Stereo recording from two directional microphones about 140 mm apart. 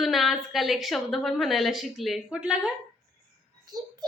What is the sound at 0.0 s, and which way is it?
A woman's voice, centre (ahead or behind).